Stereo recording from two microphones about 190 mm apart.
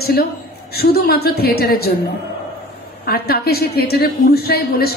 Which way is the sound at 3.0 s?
55° left (ahead or behind).